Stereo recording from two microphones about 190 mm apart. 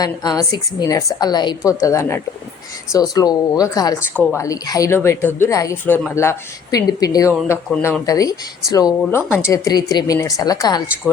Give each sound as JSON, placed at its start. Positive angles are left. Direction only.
{"t": 0.0, "sound": "a woman's voice", "side_deg": 20}